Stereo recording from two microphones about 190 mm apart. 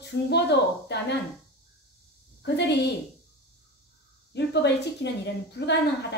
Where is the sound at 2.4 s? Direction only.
60° left (ahead or behind).